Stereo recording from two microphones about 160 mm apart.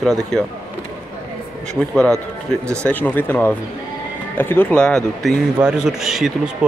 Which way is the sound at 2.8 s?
10° left (ahead or behind).